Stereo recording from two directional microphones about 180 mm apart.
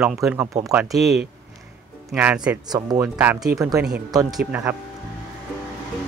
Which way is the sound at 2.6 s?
20° right (ahead or behind).